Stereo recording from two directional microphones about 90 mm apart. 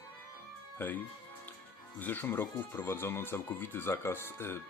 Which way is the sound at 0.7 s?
20° left (ahead or behind).